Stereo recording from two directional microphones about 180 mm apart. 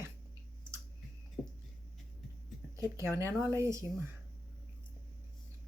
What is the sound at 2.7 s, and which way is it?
A woman's voice, 15° right (ahead or behind).